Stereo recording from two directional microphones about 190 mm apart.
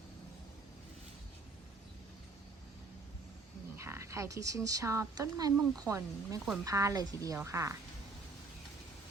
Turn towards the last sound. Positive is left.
turn(degrees=-15)  # may be behind; listen again after turning